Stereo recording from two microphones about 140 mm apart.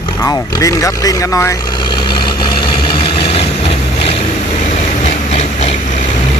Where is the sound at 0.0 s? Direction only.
30° left (ahead or behind); by 4.3 s 45° left (ahead or behind).